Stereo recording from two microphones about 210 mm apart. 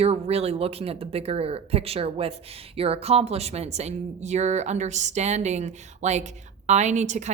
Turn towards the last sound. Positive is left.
turn(degrees=-35)  # may be behind; listen again after turning